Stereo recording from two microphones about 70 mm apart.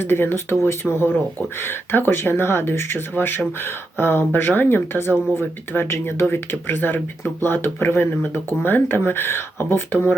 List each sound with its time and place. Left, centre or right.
0.0 s speech: left